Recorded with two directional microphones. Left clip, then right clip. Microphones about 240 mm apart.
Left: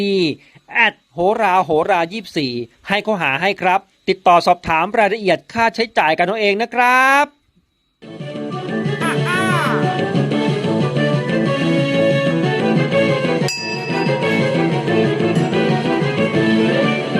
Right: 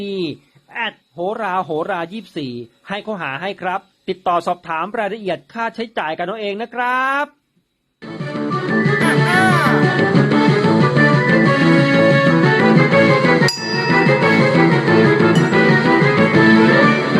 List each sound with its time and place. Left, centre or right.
0.0 s speech: left
8.0 s music: centre